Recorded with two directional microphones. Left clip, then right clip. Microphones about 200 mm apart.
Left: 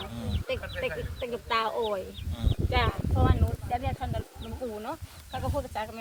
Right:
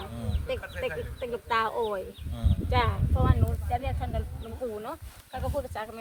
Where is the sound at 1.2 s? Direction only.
10° right (ahead or behind).